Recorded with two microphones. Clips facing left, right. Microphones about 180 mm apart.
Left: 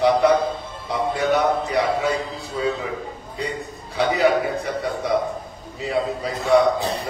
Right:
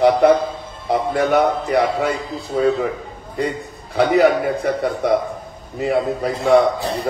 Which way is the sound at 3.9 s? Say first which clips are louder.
Right 4 dB; 55° right (ahead or behind).